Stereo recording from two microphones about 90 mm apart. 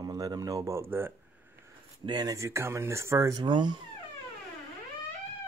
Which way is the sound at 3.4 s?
55° right (ahead or behind).